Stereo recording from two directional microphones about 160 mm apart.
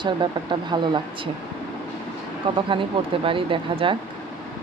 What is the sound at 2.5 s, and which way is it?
Speech, 30° right (ahead or behind).